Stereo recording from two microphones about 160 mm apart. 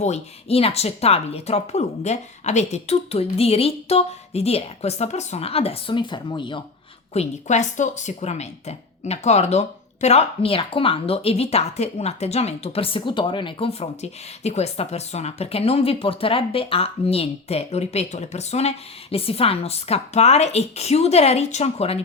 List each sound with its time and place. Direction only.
0.0 s speech: 40° left (ahead or behind)
7.1 s speech: 45° left (ahead or behind)